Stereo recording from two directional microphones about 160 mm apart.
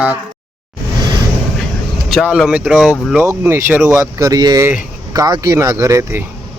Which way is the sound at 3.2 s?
15° right (ahead or behind).